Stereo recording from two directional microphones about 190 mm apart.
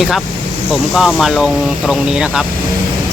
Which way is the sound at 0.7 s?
Centre (ahead or behind).